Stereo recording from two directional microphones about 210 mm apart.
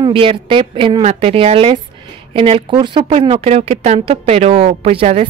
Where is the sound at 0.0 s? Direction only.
25° right (ahead or behind).